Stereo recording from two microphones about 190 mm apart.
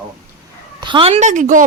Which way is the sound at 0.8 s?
25° right (ahead or behind).